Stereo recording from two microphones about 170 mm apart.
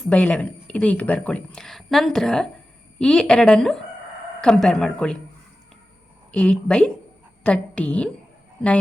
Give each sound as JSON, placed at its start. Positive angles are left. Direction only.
{"t": 0.1, "sound": "speech", "side_deg": 5}
{"t": 6.3, "sound": "a woman's voice", "side_deg": 5}